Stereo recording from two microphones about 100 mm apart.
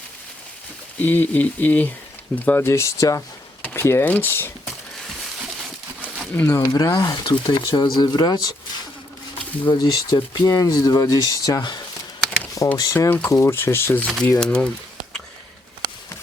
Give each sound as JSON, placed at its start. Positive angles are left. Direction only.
{"t": 0.9, "sound": "speech", "side_deg": 20}
{"t": 6.3, "sound": "speech", "side_deg": 25}
{"t": 6.7, "sound": "speech", "side_deg": 40}
{"t": 13.1, "sound": "speech", "side_deg": 15}
{"t": 14.3, "sound": "speech", "side_deg": 10}